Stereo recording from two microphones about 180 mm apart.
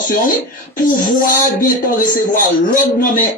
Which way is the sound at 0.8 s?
45° left (ahead or behind).